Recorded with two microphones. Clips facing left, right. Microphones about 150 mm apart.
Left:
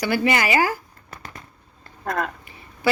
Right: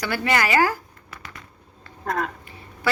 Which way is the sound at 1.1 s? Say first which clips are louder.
Left 2 dB; 45° left (ahead or behind).